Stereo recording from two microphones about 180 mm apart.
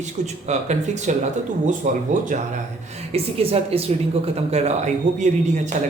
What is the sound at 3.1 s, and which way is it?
A man's voice, 35° right (ahead or behind).